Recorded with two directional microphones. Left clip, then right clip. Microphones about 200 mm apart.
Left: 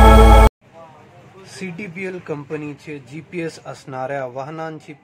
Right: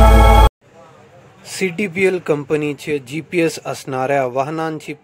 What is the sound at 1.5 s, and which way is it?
Speech, 40° right (ahead or behind).